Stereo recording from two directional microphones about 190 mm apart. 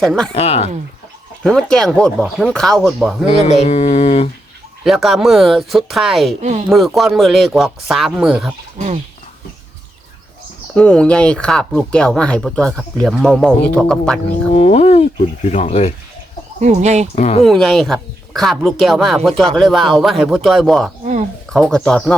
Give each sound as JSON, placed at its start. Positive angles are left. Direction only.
{"t": 0.0, "sound": "speech", "side_deg": 5}
{"t": 0.3, "sound": "speech", "side_deg": 35}
{"t": 1.5, "sound": "speech", "side_deg": 5}
{"t": 3.2, "sound": "speech", "side_deg": 35}
{"t": 4.8, "sound": "speech", "side_deg": 0}
{"t": 6.4, "sound": "speech", "side_deg": -35}
{"t": 6.7, "sound": "speech", "side_deg": 0}
{"t": 10.8, "sound": "speech", "side_deg": 5}
{"t": 14.5, "sound": "speech", "side_deg": 35}
{"t": 16.6, "sound": "speech", "side_deg": -35}
{"t": 17.2, "sound": "speech", "side_deg": 35}
{"t": 17.4, "sound": "speech", "side_deg": 0}